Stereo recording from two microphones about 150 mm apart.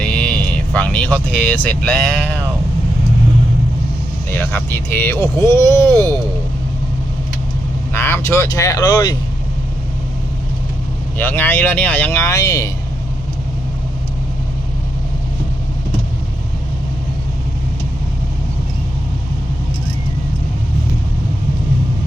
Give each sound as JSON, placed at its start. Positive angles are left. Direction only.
{"t": 0.0, "sound": "vehicle", "side_deg": 5}
{"t": 1.9, "sound": "speech", "side_deg": 10}
{"t": 4.4, "sound": "speech", "side_deg": 15}
{"t": 7.9, "sound": "speech", "side_deg": 15}
{"t": 11.2, "sound": "speech", "side_deg": 10}